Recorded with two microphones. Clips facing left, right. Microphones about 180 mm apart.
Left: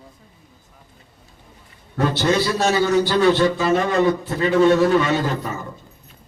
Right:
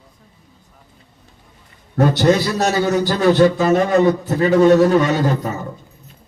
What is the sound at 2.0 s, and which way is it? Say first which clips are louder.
A man's voice: right 5 dB; 40° right (ahead or behind).